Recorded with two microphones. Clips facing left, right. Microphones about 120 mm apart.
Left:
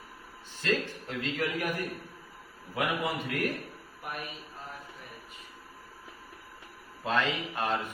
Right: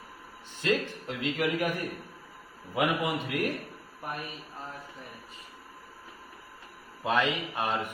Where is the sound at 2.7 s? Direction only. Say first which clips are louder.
Right 3 dB; 15° right (ahead or behind).